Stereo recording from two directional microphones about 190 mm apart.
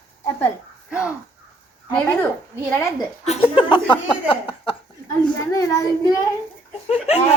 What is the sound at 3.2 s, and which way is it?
A child's voice, 30° left (ahead or behind).